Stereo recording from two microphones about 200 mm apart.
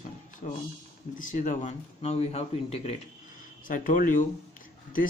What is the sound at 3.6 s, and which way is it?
Speech, 45° left (ahead or behind).